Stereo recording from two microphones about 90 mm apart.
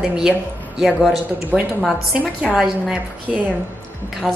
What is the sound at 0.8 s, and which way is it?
A woman's voice, 5° left (ahead or behind).